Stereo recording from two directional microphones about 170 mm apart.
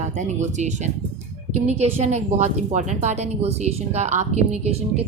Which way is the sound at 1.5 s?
40° right (ahead or behind).